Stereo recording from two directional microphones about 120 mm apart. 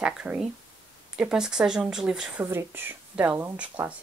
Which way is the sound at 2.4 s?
20° right (ahead or behind).